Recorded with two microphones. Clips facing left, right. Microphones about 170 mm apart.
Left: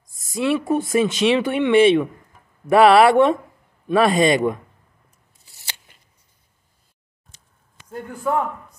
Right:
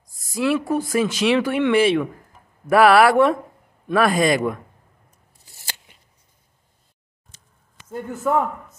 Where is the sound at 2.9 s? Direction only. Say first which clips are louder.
Left 1 dB; 25° left (ahead or behind).